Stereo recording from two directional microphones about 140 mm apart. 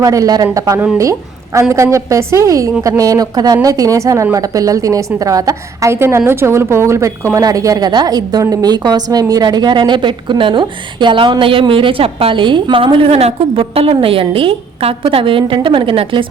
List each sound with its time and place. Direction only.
0.0 s a woman's voice: 25° right (ahead or behind)